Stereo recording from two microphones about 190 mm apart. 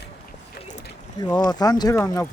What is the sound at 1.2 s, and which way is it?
Speech, 20° left (ahead or behind).